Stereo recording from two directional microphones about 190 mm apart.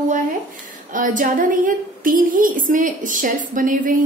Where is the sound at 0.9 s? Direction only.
45° right (ahead or behind).